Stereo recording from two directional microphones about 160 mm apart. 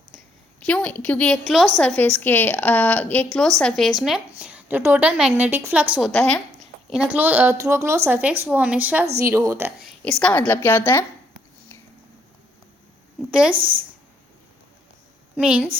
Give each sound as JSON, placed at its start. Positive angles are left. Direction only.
{"t": 0.6, "sound": "a woman's voice", "side_deg": 5}
{"t": 2.0, "sound": "a woman's voice", "side_deg": 10}
{"t": 6.1, "sound": "a woman's voice", "side_deg": 5}
{"t": 6.9, "sound": "a woman's voice", "side_deg": -5}
{"t": 9.8, "sound": "speech", "side_deg": 5}
{"t": 15.4, "sound": "a woman's voice", "side_deg": -5}